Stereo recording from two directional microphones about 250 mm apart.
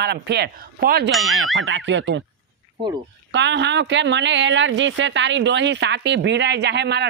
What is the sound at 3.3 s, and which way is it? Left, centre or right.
Speech, right.